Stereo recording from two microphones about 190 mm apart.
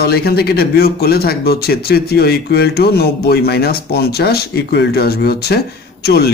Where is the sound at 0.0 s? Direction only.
55° left (ahead or behind).